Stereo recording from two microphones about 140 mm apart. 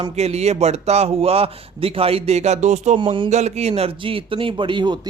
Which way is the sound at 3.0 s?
35° right (ahead or behind).